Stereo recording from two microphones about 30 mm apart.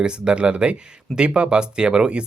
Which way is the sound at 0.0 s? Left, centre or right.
Right.